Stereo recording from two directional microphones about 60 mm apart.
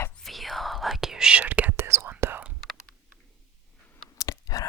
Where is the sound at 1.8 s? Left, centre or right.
Right.